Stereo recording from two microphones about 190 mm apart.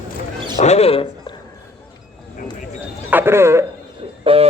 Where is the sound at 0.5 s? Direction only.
35° left (ahead or behind).